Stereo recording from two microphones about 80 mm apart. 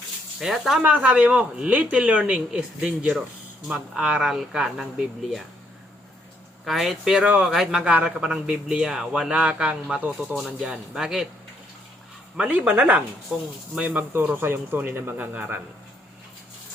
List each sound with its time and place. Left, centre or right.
0.3 s speech: centre
0.8 s a man's voice: right
6.7 s speech: centre
7.2 s a man's voice: centre
12.4 s a man's voice: centre